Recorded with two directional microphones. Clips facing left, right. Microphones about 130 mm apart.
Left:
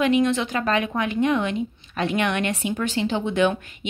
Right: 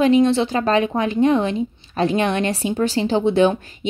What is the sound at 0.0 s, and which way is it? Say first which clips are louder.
A woman's voice: right 5 dB; 30° right (ahead or behind).